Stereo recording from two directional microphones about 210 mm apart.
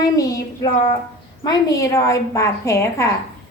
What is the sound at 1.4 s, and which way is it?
A woman's voice, 20° left (ahead or behind).